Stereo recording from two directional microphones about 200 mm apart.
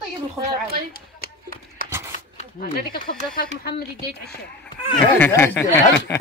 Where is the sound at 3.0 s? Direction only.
50° left (ahead or behind).